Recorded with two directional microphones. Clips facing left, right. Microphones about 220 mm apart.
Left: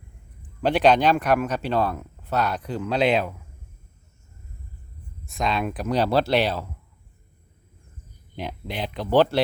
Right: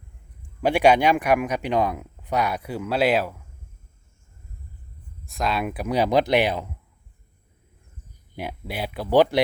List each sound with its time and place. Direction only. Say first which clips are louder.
0.6 s speech: right 1 dB; 10° right (ahead or behind)
5.2 s speech: even; centre (ahead or behind)
8.4 s speech: even; 10° right (ahead or behind)